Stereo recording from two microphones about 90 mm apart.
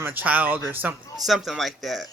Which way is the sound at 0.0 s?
20° right (ahead or behind).